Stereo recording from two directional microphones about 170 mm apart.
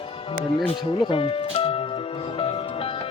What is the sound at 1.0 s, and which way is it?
Speech, 30° left (ahead or behind).